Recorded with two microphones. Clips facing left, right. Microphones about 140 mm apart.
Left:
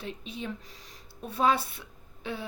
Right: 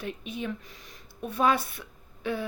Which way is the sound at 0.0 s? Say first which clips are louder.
Right 3 dB; 30° left (ahead or behind).